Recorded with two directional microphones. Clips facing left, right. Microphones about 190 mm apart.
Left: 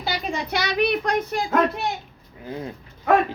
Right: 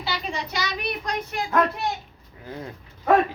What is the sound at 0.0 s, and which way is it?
Speech, 45° left (ahead or behind).